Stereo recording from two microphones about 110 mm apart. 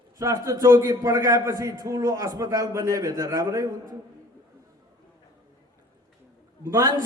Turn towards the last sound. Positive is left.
turn(degrees=-30)  # may be behind; listen again after turning